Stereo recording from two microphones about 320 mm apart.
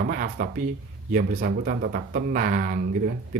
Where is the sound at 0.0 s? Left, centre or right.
Right.